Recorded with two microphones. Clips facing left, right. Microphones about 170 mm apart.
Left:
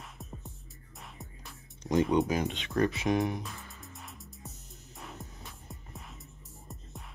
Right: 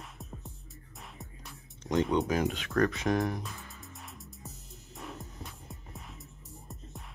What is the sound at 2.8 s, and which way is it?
Music, 5° left (ahead or behind).